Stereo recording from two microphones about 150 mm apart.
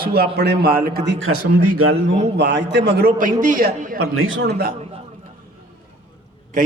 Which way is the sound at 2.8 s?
90° right.